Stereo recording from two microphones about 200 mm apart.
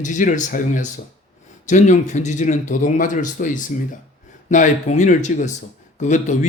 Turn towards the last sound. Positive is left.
turn(degrees=35)  # may be behind; listen again after turning